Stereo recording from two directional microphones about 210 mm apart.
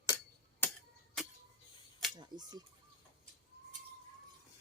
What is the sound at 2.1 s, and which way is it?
Speech, 20° right (ahead or behind).